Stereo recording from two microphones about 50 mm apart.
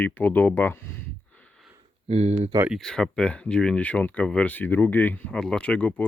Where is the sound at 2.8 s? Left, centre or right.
Centre.